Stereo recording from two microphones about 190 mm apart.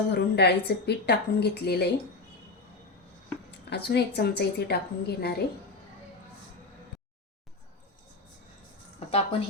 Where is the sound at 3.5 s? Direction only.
60° left (ahead or behind).